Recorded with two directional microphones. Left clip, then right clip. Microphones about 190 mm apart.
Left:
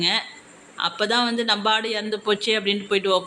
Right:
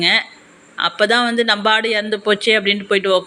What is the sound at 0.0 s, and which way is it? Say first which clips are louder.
Speech: right 7 dB; 20° right (ahead or behind).